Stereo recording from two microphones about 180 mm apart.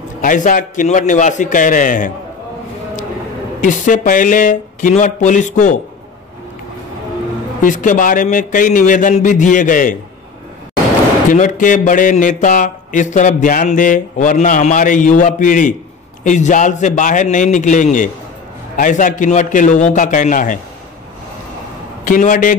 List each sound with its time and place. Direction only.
0.2 s speech: 45° left (ahead or behind)
3.6 s speech: 45° left (ahead or behind)
7.6 s speech: 45° left (ahead or behind)
11.2 s speech: 45° left (ahead or behind)
22.0 s speech: 45° left (ahead or behind)